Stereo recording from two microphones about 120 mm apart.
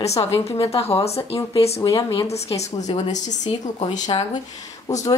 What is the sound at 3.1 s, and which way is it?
Speech, 85° left.